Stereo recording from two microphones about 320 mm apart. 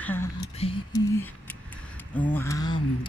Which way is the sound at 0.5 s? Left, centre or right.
Centre.